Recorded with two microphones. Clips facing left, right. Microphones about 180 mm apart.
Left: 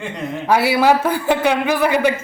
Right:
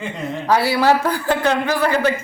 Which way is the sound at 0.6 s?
15° left (ahead or behind).